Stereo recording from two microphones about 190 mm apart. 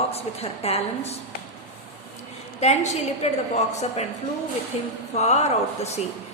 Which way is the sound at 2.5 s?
35° left (ahead or behind).